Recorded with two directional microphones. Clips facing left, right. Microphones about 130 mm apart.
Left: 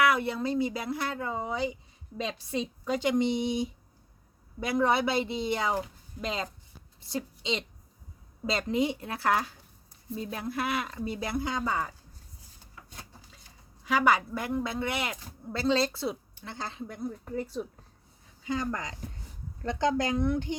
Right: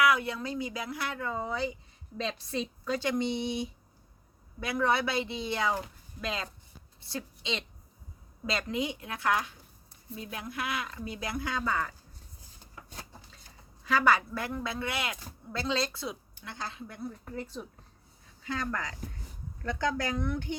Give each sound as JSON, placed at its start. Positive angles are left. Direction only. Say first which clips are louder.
{"t": 0.0, "sound": "a woman's voice", "louder": "left 1 dB", "side_deg": 30}
{"t": 1.2, "sound": "a woman's voice", "louder": "left 1 dB", "side_deg": 15}
{"t": 4.6, "sound": "a woman's voice", "louder": "left 3 dB", "side_deg": 25}
{"t": 8.5, "sound": "speech", "louder": "left 5 dB", "side_deg": 30}
{"t": 13.8, "sound": "a woman's voice", "louder": "left 1 dB", "side_deg": 15}
{"t": 16.9, "sound": "a woman's voice", "louder": "left 4 dB", "side_deg": 10}